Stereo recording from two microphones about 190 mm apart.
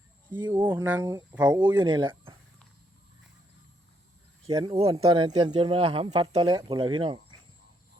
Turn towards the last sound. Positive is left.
turn(degrees=-25)  # may be behind; listen again after turning